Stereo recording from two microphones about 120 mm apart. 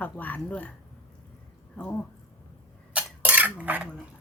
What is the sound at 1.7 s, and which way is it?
Speech, 10° left (ahead or behind).